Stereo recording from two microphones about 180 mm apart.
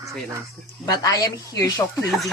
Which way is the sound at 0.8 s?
20° left (ahead or behind).